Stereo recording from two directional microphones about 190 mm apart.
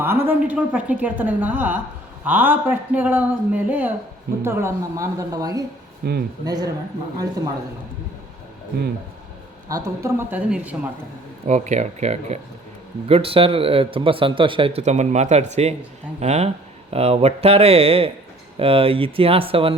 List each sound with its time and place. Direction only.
0.0 s speech: 10° right (ahead or behind)
6.0 s speech: 60° right (ahead or behind)
6.4 s speech: 20° right (ahead or behind)
9.6 s speech: 15° right (ahead or behind)
11.4 s speech: 40° right (ahead or behind)